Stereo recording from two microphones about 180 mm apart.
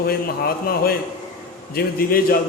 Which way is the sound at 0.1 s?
55° left (ahead or behind).